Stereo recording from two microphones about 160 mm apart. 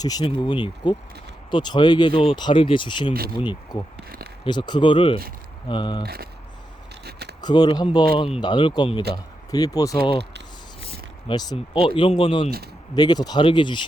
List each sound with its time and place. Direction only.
0.0 s speech: 25° left (ahead or behind)
3.1 s speech: 70° right (ahead or behind)
3.7 s speech: 25° left (ahead or behind)
7.0 s a sound: 90° right
7.4 s speech: 25° left (ahead or behind)
11.3 s speech: 30° left (ahead or behind)